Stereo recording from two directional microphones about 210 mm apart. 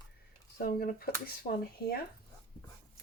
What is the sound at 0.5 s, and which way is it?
Speech, 45° left (ahead or behind).